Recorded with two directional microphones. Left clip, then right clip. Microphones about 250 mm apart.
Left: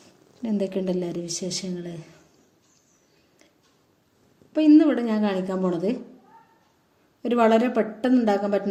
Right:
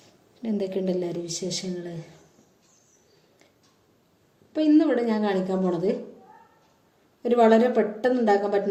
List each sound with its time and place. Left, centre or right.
0.0 s a woman's voice: left
4.5 s a woman's voice: left
7.2 s a woman's voice: left